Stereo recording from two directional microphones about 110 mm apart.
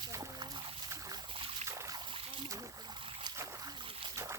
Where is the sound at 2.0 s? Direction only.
55° right (ahead or behind).